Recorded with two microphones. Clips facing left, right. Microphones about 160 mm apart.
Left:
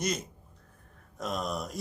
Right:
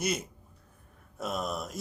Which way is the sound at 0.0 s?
10° right (ahead or behind).